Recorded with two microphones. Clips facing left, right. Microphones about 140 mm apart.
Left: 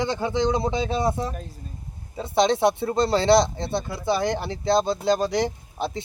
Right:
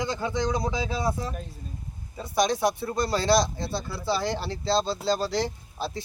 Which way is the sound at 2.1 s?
25° left (ahead or behind).